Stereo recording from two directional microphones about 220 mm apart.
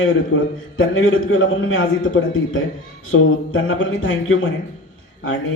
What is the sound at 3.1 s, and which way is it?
A man's voice, 65° left (ahead or behind).